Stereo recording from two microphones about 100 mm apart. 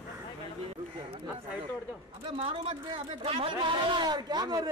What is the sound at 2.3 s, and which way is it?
Speech, 65° right (ahead or behind).